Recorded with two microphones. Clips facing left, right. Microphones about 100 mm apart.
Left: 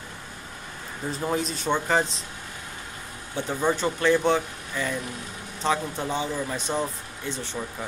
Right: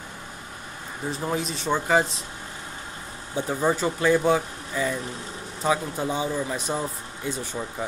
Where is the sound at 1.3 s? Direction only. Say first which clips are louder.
Even; centre (ahead or behind).